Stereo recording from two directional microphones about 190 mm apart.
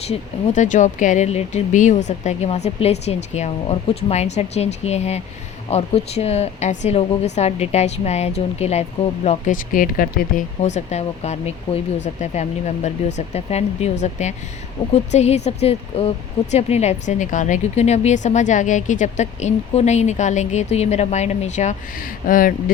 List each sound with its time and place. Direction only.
0.1 s speech: 40° left (ahead or behind)